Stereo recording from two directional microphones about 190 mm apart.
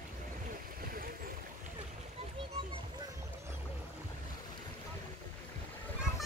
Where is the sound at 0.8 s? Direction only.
50° right (ahead or behind).